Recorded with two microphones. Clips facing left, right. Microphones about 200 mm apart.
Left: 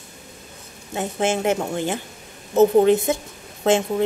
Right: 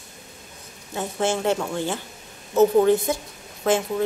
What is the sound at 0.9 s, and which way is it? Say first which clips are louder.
A woman's voice: left 2 dB; 20° left (ahead or behind).